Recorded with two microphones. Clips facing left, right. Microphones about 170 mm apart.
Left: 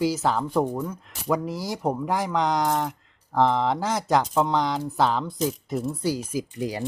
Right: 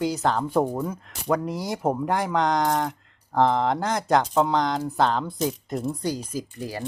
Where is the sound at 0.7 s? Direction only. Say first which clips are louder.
Right 1 dB; 10° right (ahead or behind).